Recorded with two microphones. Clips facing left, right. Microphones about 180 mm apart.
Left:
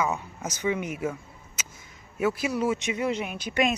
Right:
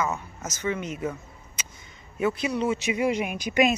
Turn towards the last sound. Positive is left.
turn(degrees=-10)  # may be behind; listen again after turning